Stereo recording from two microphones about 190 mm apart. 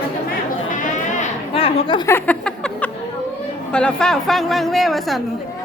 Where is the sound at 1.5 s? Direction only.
25° left (ahead or behind).